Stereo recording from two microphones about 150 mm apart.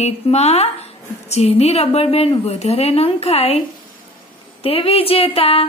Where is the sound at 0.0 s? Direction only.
45° left (ahead or behind).